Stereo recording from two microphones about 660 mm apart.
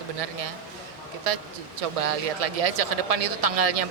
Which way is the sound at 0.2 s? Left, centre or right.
Right.